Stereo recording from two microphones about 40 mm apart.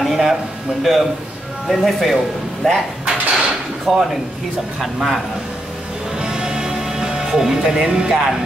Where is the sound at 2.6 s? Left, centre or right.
Centre.